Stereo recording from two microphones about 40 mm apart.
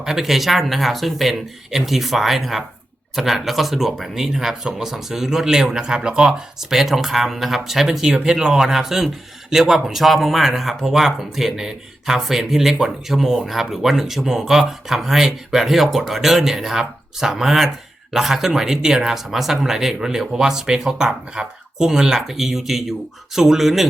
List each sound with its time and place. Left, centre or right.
0.0 s speech: centre
8.0 s speech: centre